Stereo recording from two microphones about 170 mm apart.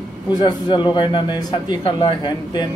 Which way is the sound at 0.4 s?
25° left (ahead or behind).